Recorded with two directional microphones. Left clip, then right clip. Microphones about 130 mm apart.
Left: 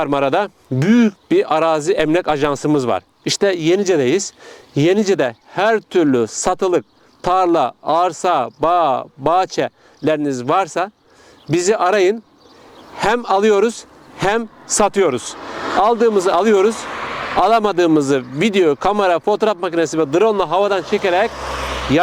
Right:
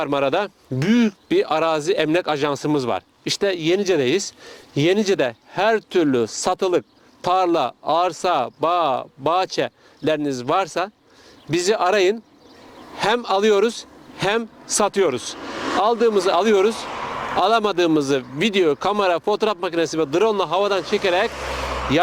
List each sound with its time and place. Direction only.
0.0 s speech: 40° left (ahead or behind)
15.4 s vehicle: 15° right (ahead or behind)
15.8 s speech: 40° left (ahead or behind)
21.3 s a sound: 30° left (ahead or behind)